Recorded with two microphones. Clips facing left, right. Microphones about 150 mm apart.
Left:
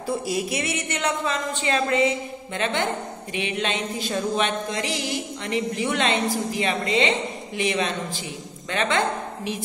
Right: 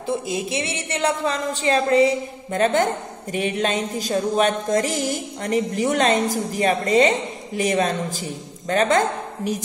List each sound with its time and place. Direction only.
0.0 s a woman's voice: 20° right (ahead or behind); by 2.9 s 40° right (ahead or behind)
3.3 s mantra: 40° right (ahead or behind)